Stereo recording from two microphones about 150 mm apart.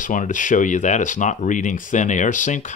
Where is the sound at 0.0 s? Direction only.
60° left (ahead or behind).